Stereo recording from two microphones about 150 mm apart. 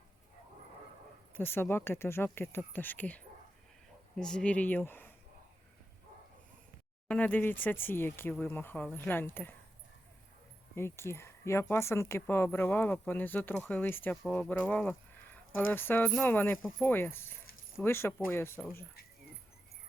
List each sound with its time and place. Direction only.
1.3 s speech: 15° left (ahead or behind)
7.1 s speech: 10° left (ahead or behind)
10.8 s speech: 15° left (ahead or behind)